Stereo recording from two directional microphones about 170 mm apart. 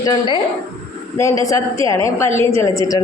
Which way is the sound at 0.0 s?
25° left (ahead or behind).